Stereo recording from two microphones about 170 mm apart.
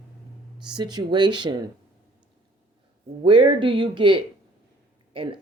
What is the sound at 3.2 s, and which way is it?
Speech, 30° right (ahead or behind).